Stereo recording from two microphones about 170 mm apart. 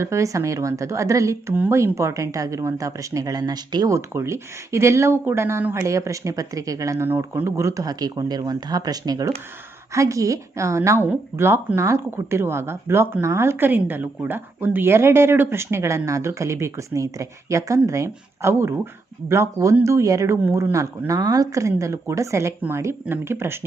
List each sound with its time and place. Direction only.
0.0 s speech: 15° right (ahead or behind)